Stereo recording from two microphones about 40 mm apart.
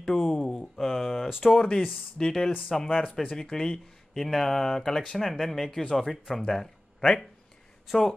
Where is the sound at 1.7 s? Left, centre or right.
Left.